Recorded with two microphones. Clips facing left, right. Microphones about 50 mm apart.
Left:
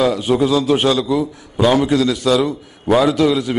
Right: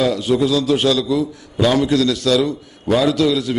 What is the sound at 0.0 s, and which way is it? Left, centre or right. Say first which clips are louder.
A man's voice: left 1 dB; centre.